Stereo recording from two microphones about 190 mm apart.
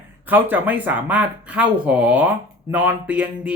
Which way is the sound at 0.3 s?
10° right (ahead or behind).